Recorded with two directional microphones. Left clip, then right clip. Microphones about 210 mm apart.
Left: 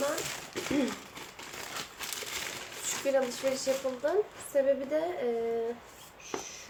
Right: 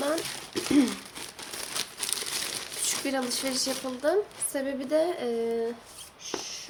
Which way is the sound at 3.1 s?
50° right (ahead or behind).